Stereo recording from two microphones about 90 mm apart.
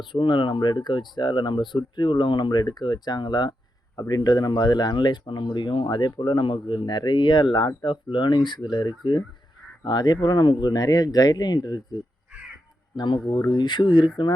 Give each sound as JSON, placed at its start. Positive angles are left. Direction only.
{"t": 0.0, "sound": "speech", "side_deg": 60}
{"t": 13.0, "sound": "speech", "side_deg": 55}